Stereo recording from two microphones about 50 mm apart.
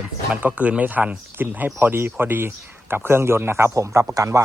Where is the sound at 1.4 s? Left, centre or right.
Right.